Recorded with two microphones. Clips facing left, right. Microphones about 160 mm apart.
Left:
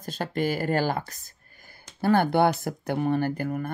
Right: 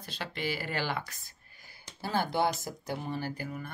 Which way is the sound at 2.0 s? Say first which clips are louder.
Left 9 dB; 60° left (ahead or behind).